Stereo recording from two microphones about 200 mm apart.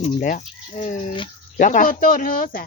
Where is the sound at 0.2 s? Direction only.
40° left (ahead or behind).